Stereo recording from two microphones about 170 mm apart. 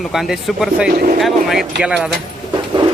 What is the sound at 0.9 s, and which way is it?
Speech, 55° right (ahead or behind).